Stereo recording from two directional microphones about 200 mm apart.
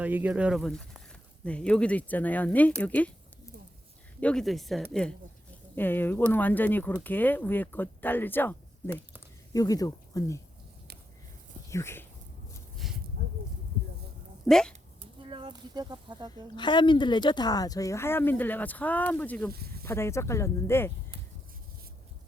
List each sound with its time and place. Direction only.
0.0 s speech: 10° right (ahead or behind); by 3.1 s 5° left (ahead or behind)
4.2 s speech: 5° left (ahead or behind)
11.7 s speech: 15° left (ahead or behind)
12.7 s a sound: centre (ahead or behind)
14.4 s speech: centre (ahead or behind)
15.3 s speech: 25° right (ahead or behind)
16.6 s speech: 25° left (ahead or behind)